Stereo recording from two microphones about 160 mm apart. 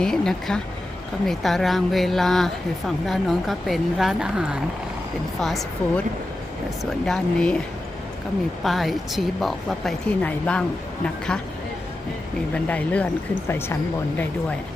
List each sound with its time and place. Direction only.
0.0 s a woman's voice: 5° left (ahead or behind)
7.0 s a woman's voice: 5° left (ahead or behind)
8.6 s a woman's voice: centre (ahead or behind)
12.6 s speech: 10° left (ahead or behind)